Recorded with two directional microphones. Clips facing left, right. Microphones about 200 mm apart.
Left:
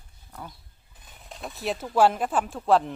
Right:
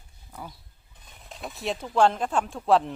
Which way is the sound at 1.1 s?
Centre (ahead or behind).